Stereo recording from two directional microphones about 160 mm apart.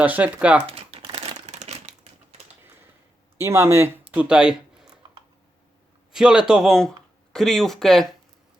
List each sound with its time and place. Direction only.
0.0 s speech: 10° right (ahead or behind)
0.7 s crumpling: 35° right (ahead or behind)
3.3 s speech: 15° right (ahead or behind)
6.1 s speech: 5° right (ahead or behind)